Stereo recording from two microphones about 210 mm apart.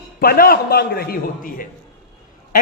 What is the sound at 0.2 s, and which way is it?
A man's voice, 45° left (ahead or behind).